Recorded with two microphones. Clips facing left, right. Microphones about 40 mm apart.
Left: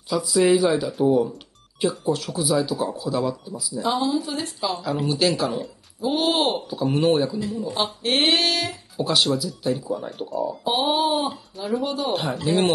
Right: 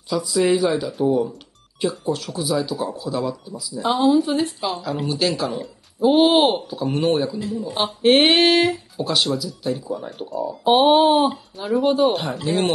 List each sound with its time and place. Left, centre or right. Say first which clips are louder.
0.1 s speech: even; centre
3.8 s a woman's voice: right 6 dB; right
4.8 s speech: left 1 dB; centre
5.9 s speech: right 7 dB; right
6.7 s speech: even; centre
7.8 s a woman's voice: right 7 dB; right
8.9 s speech: even; centre
10.8 s a woman's voice: right 7 dB; right
11.5 s speech: right 5 dB; centre